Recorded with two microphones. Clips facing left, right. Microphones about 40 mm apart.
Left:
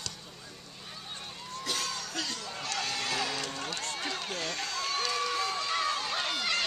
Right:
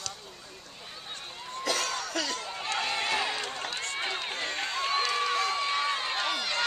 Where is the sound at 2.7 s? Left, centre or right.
Right.